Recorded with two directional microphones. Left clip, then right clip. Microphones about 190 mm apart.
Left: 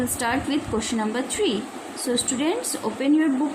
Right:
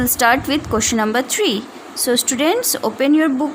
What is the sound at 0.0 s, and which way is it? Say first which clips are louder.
A woman's voice: right 10 dB; 60° right (ahead or behind).